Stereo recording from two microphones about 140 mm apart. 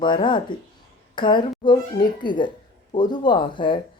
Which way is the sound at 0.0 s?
35° left (ahead or behind).